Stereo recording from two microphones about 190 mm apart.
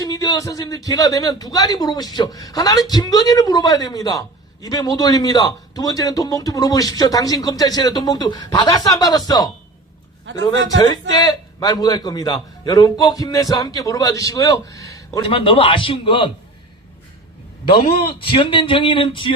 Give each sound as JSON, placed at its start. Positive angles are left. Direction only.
{"t": 0.0, "sound": "a man's voice", "side_deg": 20}
{"t": 10.3, "sound": "a man's voice", "side_deg": -75}
{"t": 11.1, "sound": "a man's voice", "side_deg": 20}
{"t": 17.7, "sound": "a man's voice", "side_deg": 25}